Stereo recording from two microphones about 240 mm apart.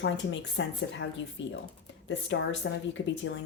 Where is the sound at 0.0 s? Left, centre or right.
Left.